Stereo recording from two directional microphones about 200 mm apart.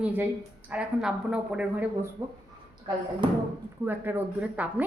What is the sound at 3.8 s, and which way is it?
Speech, 10° right (ahead or behind).